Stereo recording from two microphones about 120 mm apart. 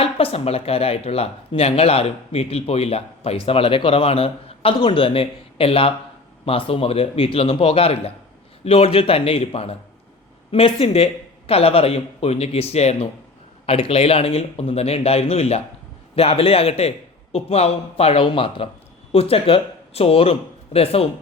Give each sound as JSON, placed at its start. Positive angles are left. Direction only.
{"t": 0.0, "sound": "speech", "side_deg": 50}